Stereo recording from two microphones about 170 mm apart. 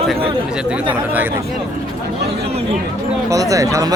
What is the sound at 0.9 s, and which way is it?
Speech, 10° right (ahead or behind).